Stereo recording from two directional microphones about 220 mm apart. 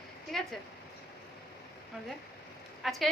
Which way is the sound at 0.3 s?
Centre (ahead or behind).